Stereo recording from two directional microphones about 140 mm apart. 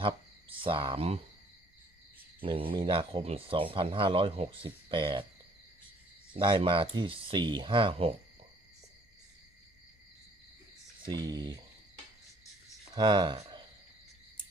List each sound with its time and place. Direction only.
0.6 s speech: 35° right (ahead or behind)
2.4 s speech: 40° right (ahead or behind)
6.3 s speech: 40° right (ahead or behind)
11.0 s speech: 30° right (ahead or behind)
12.9 s speech: 35° right (ahead or behind)